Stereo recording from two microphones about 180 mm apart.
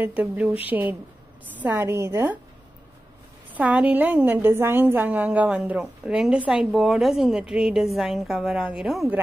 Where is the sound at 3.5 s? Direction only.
10° right (ahead or behind).